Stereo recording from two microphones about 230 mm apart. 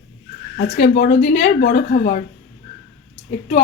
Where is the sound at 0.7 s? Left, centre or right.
Left.